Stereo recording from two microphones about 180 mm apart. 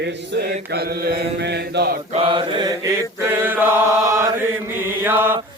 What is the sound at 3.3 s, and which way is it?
Mantra, 10° right (ahead or behind).